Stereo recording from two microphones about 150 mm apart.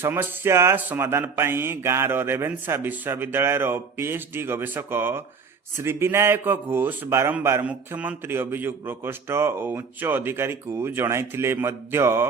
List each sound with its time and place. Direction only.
0.0 s a man's voice: 15° right (ahead or behind)